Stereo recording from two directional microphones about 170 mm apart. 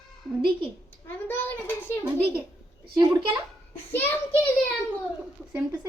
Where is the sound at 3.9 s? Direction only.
10° left (ahead or behind).